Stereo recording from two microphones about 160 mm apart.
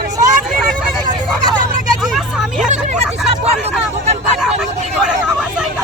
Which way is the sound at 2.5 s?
50° right (ahead or behind).